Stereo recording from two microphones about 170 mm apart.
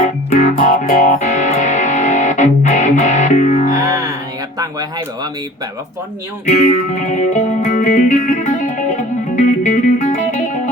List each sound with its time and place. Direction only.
0.0 s music: 45° left (ahead or behind)
4.5 s speech: 20° right (ahead or behind)
6.4 s music: 45° left (ahead or behind)